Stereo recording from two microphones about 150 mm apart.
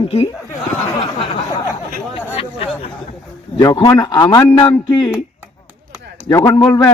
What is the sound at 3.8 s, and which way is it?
A man's voice, 25° left (ahead or behind).